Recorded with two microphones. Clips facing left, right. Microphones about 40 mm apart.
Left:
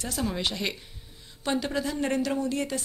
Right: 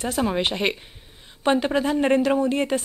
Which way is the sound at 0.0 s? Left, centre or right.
Right.